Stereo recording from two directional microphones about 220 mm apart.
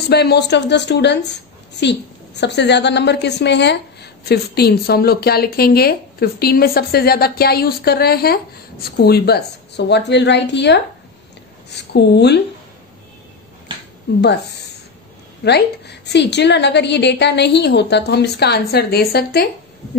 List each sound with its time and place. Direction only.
0.1 s a woman's voice: 50° left (ahead or behind)
14.1 s a woman's voice: 50° left (ahead or behind)
15.4 s a woman's voice: 50° left (ahead or behind)